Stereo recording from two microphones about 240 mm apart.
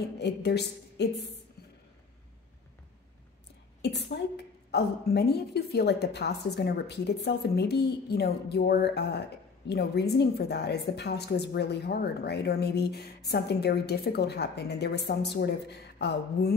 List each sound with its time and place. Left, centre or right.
0.2 s a woman's voice: left
3.8 s a woman's voice: left